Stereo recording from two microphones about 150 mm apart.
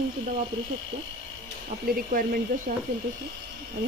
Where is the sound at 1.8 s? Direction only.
75° right (ahead or behind).